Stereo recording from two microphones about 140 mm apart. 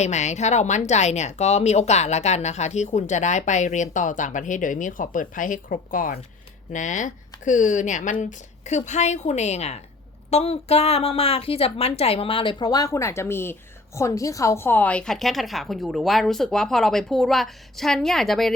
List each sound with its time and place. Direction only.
0.0 s speech: 55° left (ahead or behind); by 6.1 s 80° left
6.7 s speech: 65° left (ahead or behind); by 18.5 s centre (ahead or behind)